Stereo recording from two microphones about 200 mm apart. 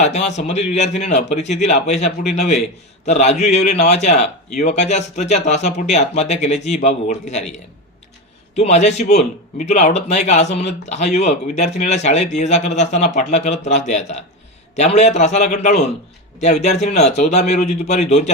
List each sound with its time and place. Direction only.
0.0 s speech: 35° left (ahead or behind)
8.5 s speech: 35° left (ahead or behind)